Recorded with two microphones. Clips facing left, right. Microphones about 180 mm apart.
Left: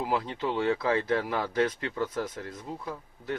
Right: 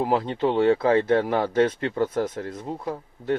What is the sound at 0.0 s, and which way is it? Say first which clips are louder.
Speech: right 7 dB; 50° right (ahead or behind).